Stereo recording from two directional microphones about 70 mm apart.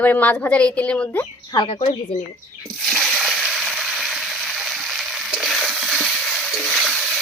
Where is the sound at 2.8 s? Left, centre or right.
Centre.